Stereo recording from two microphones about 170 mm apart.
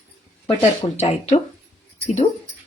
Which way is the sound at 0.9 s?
40° left (ahead or behind).